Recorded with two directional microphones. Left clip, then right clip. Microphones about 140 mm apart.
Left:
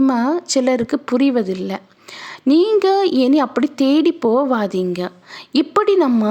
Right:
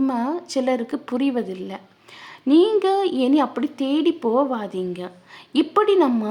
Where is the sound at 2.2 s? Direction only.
40° left (ahead or behind).